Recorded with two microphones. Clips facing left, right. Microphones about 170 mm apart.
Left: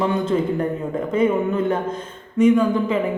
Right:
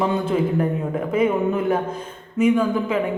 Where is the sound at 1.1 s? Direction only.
10° right (ahead or behind).